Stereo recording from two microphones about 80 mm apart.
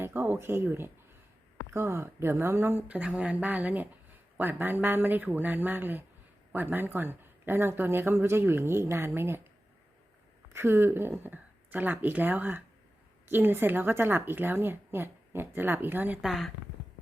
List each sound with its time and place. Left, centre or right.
0.0 s speech: right
10.5 s speech: right
16.2 s speech: centre